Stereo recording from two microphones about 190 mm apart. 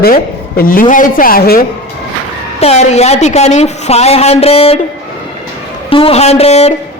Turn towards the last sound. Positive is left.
turn(degrees=35)  # may be behind; listen again after turning